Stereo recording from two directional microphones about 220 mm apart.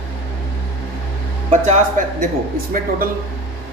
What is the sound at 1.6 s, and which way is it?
Speech, 35° right (ahead or behind).